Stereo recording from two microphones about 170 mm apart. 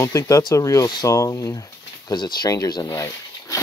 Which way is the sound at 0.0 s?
20° left (ahead or behind).